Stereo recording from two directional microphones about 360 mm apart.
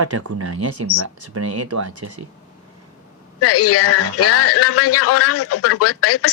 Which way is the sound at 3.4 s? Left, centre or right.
Left.